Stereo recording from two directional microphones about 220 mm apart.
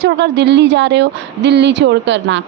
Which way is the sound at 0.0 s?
50° right (ahead or behind).